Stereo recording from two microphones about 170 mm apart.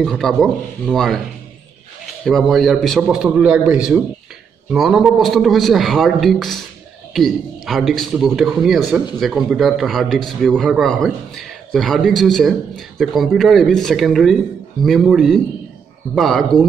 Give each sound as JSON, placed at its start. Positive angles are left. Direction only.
{"t": 0.0, "sound": "a man's voice", "side_deg": 0}
{"t": 2.2, "sound": "a man's voice", "side_deg": 0}